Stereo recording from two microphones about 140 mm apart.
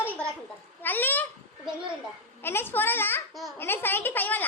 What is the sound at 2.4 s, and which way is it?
A woman's voice, 15° left (ahead or behind).